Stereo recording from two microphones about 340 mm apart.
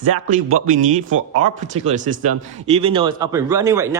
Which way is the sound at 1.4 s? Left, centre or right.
Right.